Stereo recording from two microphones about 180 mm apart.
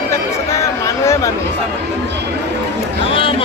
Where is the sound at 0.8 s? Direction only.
15° left (ahead or behind).